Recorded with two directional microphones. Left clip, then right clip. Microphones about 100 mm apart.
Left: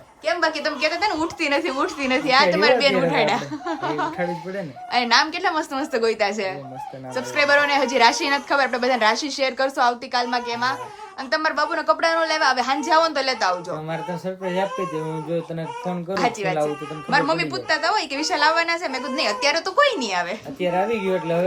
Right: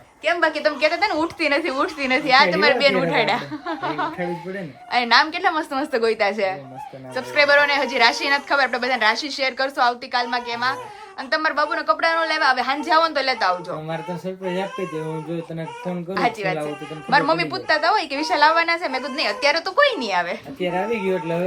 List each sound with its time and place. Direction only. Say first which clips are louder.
0.3 s a woman's voice: right 3 dB; 20° left (ahead or behind)
16.1 s a woman's voice: even; 25° left (ahead or behind)